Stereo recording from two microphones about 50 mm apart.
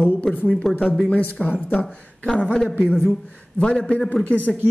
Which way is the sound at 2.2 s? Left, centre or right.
Centre.